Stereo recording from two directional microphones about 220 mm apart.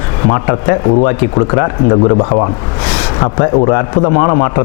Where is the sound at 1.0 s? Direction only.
20° left (ahead or behind).